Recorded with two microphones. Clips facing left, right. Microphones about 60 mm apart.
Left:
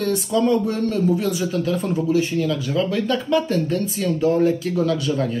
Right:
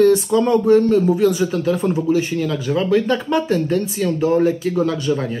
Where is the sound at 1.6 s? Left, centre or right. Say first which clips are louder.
Right 3 dB; right.